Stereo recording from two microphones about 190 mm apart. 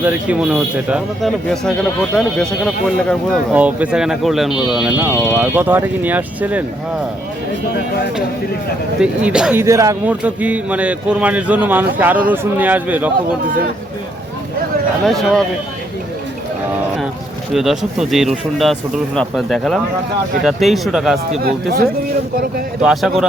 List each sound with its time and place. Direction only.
0.0 s a man's voice: 5° right (ahead or behind)
9.0 s a man's voice: 5° right (ahead or behind)
15.0 s speech: centre (ahead or behind)
17.5 s speech: centre (ahead or behind)
21.4 s speech: 50° right (ahead or behind)
22.8 s speech: 5° right (ahead or behind)